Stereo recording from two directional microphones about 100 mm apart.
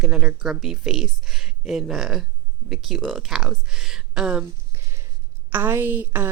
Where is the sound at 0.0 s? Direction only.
10° right (ahead or behind).